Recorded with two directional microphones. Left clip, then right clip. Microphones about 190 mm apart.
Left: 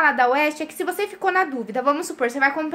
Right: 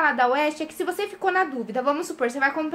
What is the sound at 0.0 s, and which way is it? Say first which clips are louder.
A woman's voice: left 3 dB; 15° left (ahead or behind).